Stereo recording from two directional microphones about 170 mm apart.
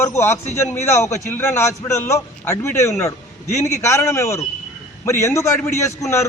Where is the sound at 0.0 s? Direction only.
15° left (ahead or behind).